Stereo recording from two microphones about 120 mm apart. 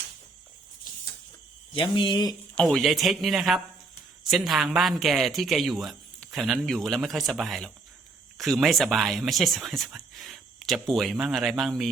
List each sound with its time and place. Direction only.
1.7 s speech: 45° left (ahead or behind)
2.6 s speech: 5° left (ahead or behind)